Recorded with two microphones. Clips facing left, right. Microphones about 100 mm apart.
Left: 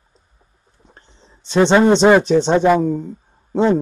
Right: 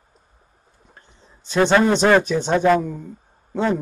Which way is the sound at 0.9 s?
25° left (ahead or behind).